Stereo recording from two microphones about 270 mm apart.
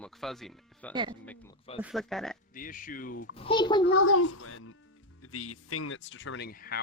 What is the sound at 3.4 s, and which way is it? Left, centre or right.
Speech, centre.